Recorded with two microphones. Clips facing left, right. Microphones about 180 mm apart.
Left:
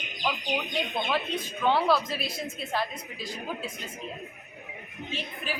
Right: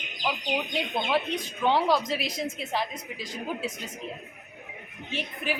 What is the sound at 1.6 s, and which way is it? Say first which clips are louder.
A woman's voice: even; 15° right (ahead or behind).